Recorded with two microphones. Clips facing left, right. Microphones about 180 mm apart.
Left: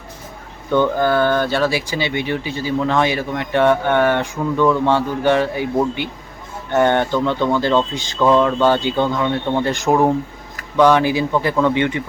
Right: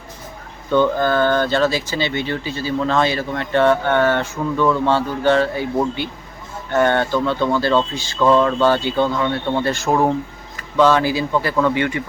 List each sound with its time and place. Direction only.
0.7 s speech: 15° left (ahead or behind)